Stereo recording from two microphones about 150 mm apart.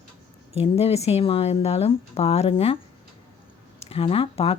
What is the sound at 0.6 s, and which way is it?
Speech, 40° left (ahead or behind).